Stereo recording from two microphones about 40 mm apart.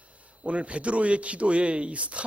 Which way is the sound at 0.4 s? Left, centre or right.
Right.